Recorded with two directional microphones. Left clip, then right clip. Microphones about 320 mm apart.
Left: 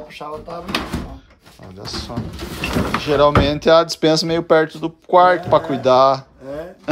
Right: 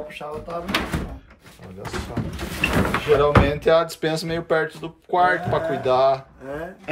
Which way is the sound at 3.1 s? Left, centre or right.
Centre.